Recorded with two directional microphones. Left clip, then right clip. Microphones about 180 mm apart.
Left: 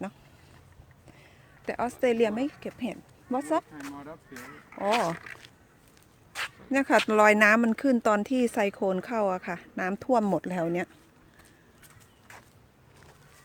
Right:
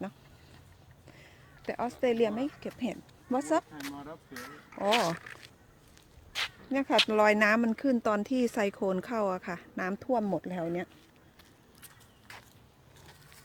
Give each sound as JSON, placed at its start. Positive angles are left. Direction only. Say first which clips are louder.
{"t": 1.6, "sound": "speech", "louder": "left 3 dB", "side_deg": 15}
{"t": 6.3, "sound": "a sound", "louder": "left 4 dB", "side_deg": 20}
{"t": 7.1, "sound": "speech", "louder": "left 7 dB", "side_deg": 20}
{"t": 10.0, "sound": "speech", "louder": "left 6 dB", "side_deg": 25}